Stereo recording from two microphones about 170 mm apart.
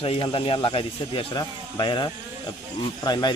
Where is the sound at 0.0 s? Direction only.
30° left (ahead or behind).